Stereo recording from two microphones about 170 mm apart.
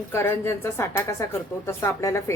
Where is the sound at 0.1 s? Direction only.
15° left (ahead or behind).